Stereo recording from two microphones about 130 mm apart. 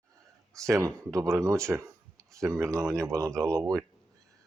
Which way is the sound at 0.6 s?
25° right (ahead or behind).